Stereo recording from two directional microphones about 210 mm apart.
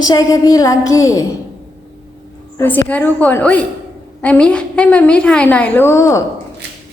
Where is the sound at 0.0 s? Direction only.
15° left (ahead or behind).